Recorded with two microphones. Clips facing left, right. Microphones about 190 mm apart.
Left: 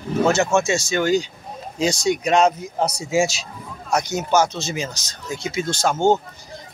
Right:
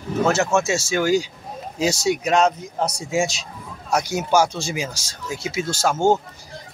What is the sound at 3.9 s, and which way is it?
Speech, 10° right (ahead or behind).